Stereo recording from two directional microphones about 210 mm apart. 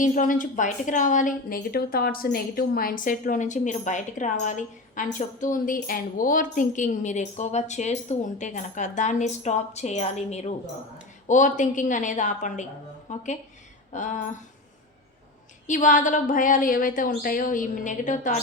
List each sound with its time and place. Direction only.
0.0 s a woman's voice: 40° left (ahead or behind)
13.1 s a sound: 35° left (ahead or behind)
13.9 s a woman's voice: 35° left (ahead or behind)
15.6 s a woman's voice: 35° left (ahead or behind)